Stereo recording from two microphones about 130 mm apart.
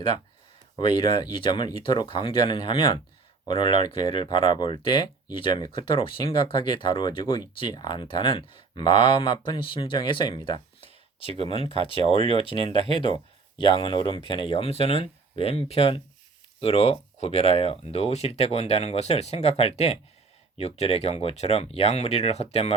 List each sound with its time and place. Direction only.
1.1 s speech: 40° left (ahead or behind)
12.1 s speech: 50° right (ahead or behind)
12.4 s speech: 45° left (ahead or behind)